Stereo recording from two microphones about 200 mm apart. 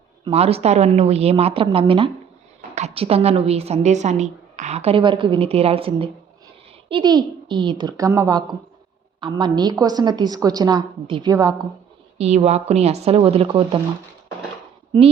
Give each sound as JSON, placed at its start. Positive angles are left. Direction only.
{"t": 0.3, "sound": "a woman's voice", "side_deg": -30}
{"t": 12.1, "sound": "a woman's voice", "side_deg": -30}